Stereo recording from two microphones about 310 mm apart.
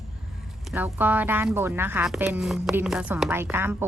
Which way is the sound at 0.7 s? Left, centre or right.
Centre.